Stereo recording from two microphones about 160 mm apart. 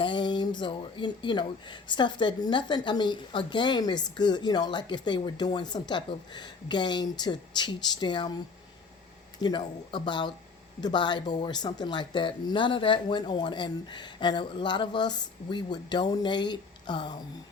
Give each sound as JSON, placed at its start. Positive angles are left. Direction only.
{"t": 0.0, "sound": "speech", "side_deg": 30}
{"t": 9.4, "sound": "speech", "side_deg": 30}